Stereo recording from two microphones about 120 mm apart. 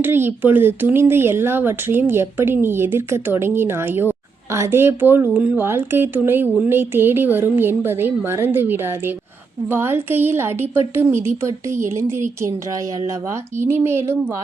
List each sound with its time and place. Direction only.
0.0 s a woman's voice: 20° right (ahead or behind)
13.6 s a woman's voice: 20° right (ahead or behind)